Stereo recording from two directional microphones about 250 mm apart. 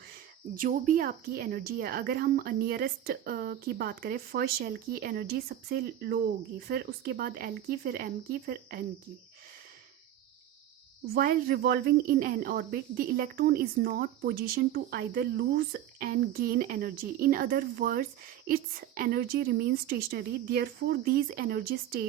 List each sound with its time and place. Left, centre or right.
0.5 s speech: right
11.1 s speech: right